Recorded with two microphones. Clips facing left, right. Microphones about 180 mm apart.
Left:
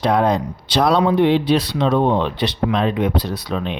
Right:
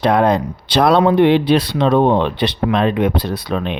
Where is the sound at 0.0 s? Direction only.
65° right (ahead or behind).